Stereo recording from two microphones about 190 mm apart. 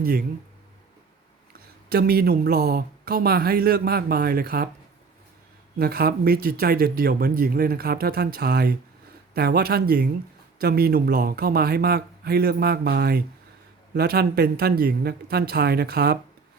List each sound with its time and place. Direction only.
0.0 s speech: 50° right (ahead or behind)
1.5 s speech: 55° right (ahead or behind)
5.8 s speech: 55° right (ahead or behind)